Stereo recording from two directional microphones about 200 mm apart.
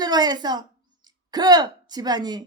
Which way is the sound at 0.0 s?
20° right (ahead or behind).